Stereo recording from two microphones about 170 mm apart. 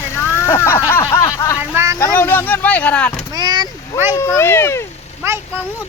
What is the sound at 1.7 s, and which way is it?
Speech, 15° right (ahead or behind).